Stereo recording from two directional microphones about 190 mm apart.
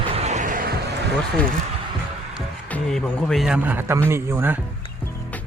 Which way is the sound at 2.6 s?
5° left (ahead or behind).